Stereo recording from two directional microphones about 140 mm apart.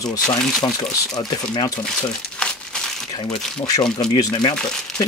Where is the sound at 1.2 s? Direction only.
30° left (ahead or behind).